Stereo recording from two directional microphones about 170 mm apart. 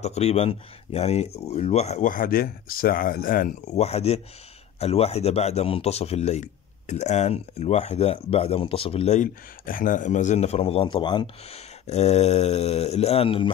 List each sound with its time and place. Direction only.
0.0 s speech: 40° left (ahead or behind)
11.9 s speech: 40° left (ahead or behind)